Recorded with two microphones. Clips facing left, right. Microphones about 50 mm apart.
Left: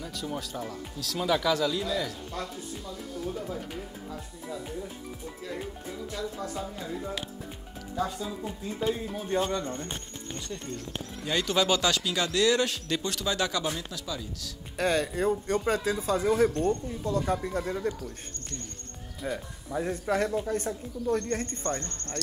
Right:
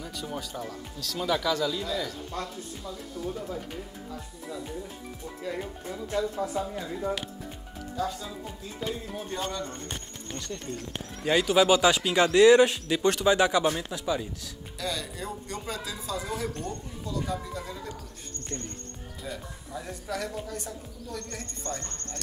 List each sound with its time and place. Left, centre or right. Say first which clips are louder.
0.0 s speech: left 1 dB; centre
6.3 s speech: right 5 dB; centre
7.9 s speech: left 1 dB; centre
9.3 s speech: left 6 dB; centre
11.3 s speech: right 4 dB; centre
14.8 s speech: left 8 dB; left
19.7 s speech: left 7 dB; left